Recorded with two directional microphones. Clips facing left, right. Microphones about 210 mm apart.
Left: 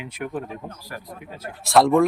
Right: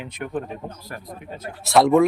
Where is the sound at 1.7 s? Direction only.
Centre (ahead or behind).